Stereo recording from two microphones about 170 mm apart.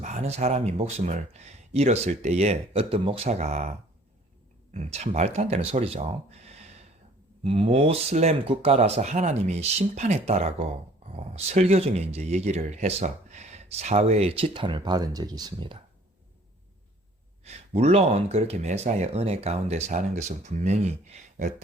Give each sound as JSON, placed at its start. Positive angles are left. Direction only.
{"t": 0.0, "sound": "speech", "side_deg": -45}
{"t": 4.7, "sound": "speech", "side_deg": -40}
{"t": 17.7, "sound": "speech", "side_deg": -40}